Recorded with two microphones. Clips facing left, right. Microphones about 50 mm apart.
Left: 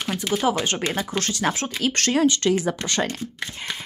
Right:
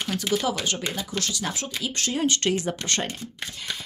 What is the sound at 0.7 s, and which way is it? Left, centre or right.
Speech, left.